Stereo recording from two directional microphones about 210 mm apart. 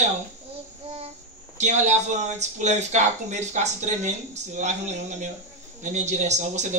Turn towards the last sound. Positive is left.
turn(degrees=-35)  # may be behind; listen again after turning